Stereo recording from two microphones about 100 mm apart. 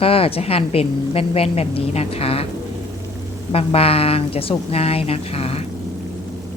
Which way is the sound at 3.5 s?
75° left (ahead or behind).